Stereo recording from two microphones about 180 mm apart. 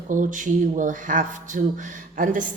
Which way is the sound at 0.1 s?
45° right (ahead or behind).